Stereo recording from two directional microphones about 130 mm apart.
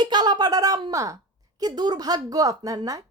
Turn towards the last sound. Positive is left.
turn(degrees=-25)  # may be behind; listen again after turning